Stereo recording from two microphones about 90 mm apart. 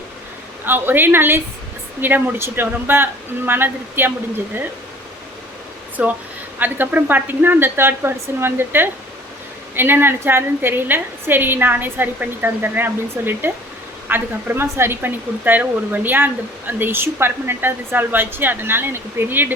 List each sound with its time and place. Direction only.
0.6 s speech: 25° right (ahead or behind)
6.0 s speech: 20° right (ahead or behind)